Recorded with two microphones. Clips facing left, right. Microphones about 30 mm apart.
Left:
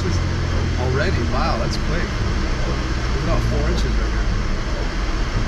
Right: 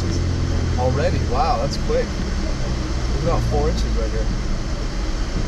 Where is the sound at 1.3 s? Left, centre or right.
Centre.